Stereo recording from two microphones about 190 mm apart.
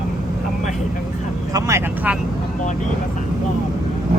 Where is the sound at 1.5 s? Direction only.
15° right (ahead or behind).